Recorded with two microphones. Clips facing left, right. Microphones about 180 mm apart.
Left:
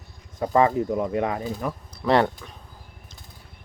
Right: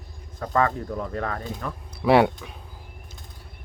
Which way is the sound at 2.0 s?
5° right (ahead or behind).